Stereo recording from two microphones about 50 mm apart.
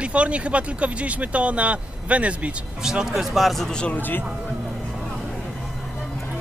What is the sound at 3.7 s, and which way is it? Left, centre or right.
Speech, centre.